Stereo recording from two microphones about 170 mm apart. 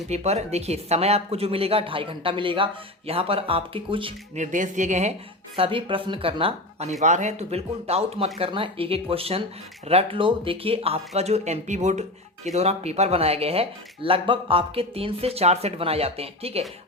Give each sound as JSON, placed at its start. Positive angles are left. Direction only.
{"t": 0.1, "sound": "speech", "side_deg": -40}
{"t": 4.4, "sound": "speech", "side_deg": -45}
{"t": 5.5, "sound": "speech", "side_deg": -30}